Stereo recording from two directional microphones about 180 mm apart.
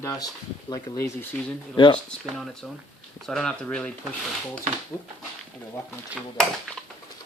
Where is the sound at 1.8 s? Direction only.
25° left (ahead or behind).